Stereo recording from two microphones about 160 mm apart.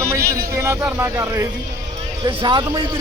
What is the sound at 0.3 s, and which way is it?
Speech, 15° right (ahead or behind).